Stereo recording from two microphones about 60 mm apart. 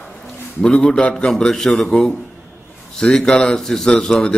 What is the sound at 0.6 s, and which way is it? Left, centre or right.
A man's voice, centre.